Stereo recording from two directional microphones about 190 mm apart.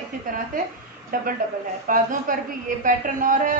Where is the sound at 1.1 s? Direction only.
45° right (ahead or behind).